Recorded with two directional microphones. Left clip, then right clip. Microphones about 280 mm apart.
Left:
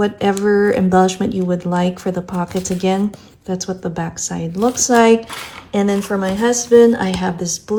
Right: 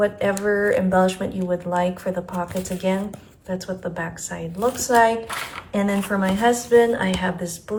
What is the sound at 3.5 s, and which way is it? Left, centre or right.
Speech, left.